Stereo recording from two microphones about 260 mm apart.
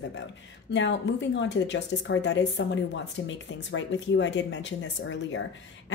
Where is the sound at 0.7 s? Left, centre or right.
Left.